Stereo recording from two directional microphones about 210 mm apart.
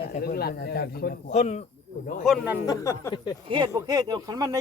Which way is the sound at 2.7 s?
15° left (ahead or behind).